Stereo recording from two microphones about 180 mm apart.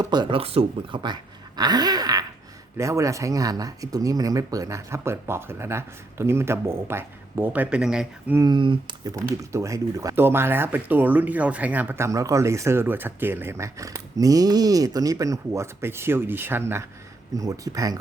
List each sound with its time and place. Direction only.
0.0 s speech: 25° right (ahead or behind); by 8.4 s 5° right (ahead or behind)
8.4 s speech: 25° right (ahead or behind)
9.1 s speech: 15° right (ahead or behind)